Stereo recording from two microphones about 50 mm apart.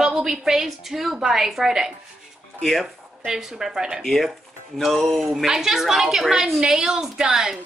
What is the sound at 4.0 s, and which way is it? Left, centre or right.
A woman's voice, centre.